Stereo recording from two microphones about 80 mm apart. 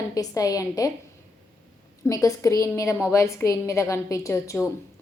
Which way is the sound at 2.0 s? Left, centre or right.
Left.